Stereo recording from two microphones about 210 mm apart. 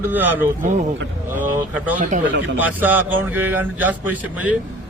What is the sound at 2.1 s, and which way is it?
Speech, 40° right (ahead or behind).